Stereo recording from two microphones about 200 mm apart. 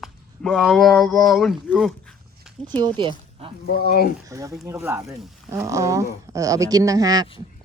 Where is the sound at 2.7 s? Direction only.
20° right (ahead or behind).